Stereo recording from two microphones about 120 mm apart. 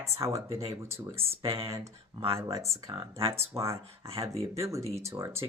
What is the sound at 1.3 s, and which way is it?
Speech, 55° right (ahead or behind).